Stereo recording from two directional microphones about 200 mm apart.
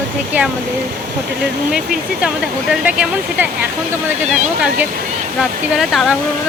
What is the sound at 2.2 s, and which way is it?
Speech, 5° right (ahead or behind).